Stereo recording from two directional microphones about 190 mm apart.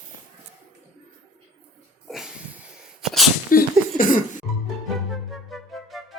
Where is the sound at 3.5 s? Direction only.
45° left (ahead or behind).